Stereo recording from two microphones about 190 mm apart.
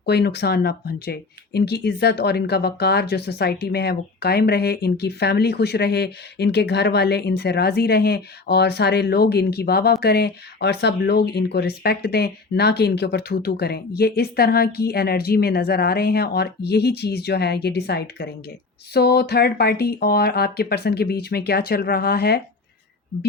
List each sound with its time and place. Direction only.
0.0 s speech: 60° left (ahead or behind)